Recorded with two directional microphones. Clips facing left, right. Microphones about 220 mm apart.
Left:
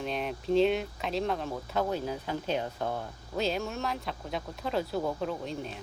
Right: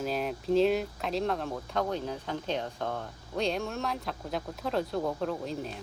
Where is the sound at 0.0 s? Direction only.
Centre (ahead or behind).